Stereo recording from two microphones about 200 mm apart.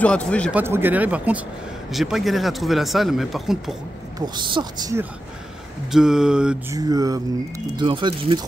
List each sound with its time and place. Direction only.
0.0 s speech: 5° left (ahead or behind)
0.5 s speech: 10° right (ahead or behind)
4.4 s speech: 25° right (ahead or behind)
5.9 s speech: 5° right (ahead or behind)
6.7 s speech: 20° right (ahead or behind)